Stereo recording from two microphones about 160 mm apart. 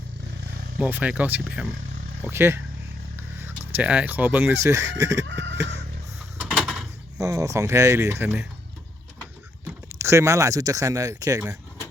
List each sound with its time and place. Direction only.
0.8 s speech: 10° right (ahead or behind)
3.8 s speech: 10° right (ahead or behind)
6.3 s door: 5° right (ahead or behind)
7.2 s speech: 20° right (ahead or behind)
10.0 s speech: 15° right (ahead or behind)